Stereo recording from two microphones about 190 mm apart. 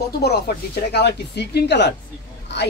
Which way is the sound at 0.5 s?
55° left (ahead or behind).